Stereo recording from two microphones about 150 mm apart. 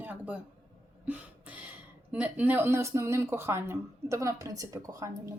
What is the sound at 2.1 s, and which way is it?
Speech, 10° right (ahead or behind).